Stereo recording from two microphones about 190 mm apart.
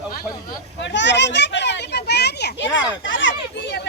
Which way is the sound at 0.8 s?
70° left (ahead or behind).